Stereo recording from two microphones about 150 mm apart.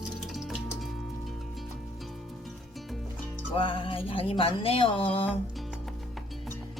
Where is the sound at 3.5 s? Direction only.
35° left (ahead or behind).